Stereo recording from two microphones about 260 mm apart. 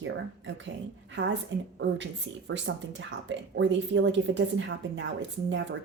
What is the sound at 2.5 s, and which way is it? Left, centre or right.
Speech, right.